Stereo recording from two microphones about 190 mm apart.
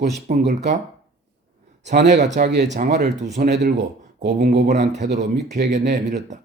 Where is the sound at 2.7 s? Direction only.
40° right (ahead or behind); by 6.0 s 60° right (ahead or behind).